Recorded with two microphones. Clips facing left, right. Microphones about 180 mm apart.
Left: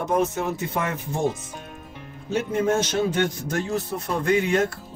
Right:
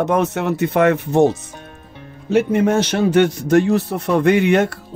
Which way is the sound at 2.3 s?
70° right (ahead or behind).